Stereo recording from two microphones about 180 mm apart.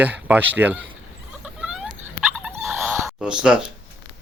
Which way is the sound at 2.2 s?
5° right (ahead or behind).